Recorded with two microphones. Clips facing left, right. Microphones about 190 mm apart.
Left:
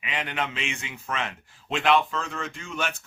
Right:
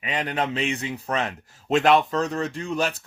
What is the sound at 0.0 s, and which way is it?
Speech, 40° right (ahead or behind).